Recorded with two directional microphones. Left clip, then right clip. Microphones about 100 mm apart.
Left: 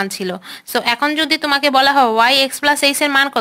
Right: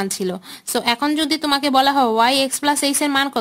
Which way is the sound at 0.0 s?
45° right (ahead or behind).